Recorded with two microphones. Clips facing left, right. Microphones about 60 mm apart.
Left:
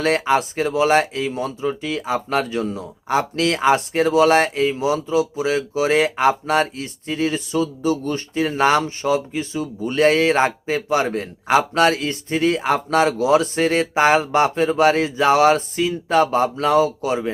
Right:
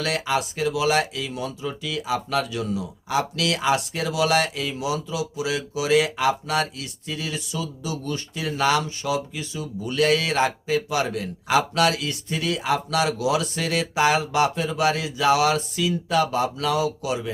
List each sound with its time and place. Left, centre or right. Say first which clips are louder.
0.0 s speech: left 6 dB; left